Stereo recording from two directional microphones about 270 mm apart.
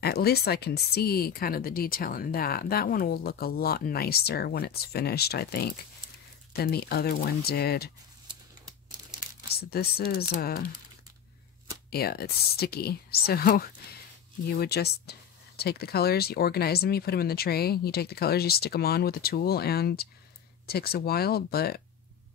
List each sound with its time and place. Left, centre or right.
0.0 s speech: left
9.5 s speech: left
11.9 s speech: left